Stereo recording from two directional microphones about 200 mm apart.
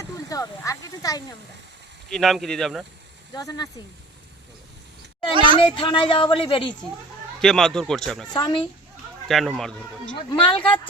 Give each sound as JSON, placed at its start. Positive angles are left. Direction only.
{"t": 0.0, "sound": "speech", "side_deg": 15}
{"t": 2.0, "sound": "speech", "side_deg": 0}
{"t": 3.3, "sound": "speech", "side_deg": 20}
{"t": 5.3, "sound": "a woman's voice", "side_deg": -25}
{"t": 5.5, "sound": "speech", "side_deg": 25}
{"t": 7.4, "sound": "speech", "side_deg": 5}
{"t": 8.3, "sound": "speech", "side_deg": 20}
{"t": 9.2, "sound": "speech", "side_deg": 0}
{"t": 10.2, "sound": "speech", "side_deg": 25}